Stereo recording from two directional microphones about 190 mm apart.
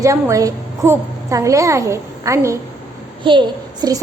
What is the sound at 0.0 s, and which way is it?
A woman's voice, 15° right (ahead or behind).